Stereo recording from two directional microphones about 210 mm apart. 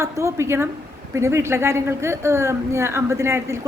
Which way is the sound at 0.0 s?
15° right (ahead or behind).